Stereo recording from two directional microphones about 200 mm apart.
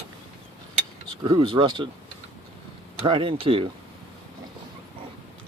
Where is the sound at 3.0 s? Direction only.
25° right (ahead or behind).